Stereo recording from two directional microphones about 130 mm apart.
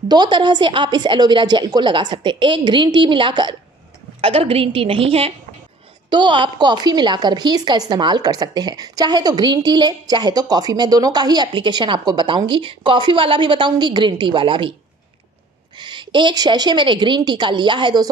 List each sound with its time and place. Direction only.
0.1 s a woman's voice: 35° right (ahead or behind)
6.0 s a woman's voice: 35° right (ahead or behind)
15.8 s a woman's voice: 35° right (ahead or behind)